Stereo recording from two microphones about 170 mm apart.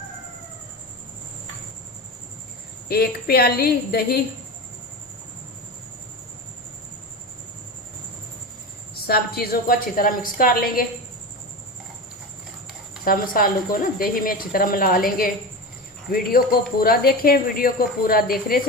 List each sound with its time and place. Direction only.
2.9 s speech: 65° left (ahead or behind)
9.0 s speech: 65° left (ahead or behind)
13.1 s speech: 60° left (ahead or behind)